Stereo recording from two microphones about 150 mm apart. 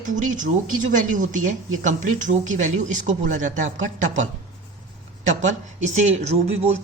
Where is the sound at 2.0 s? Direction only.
55° right (ahead or behind).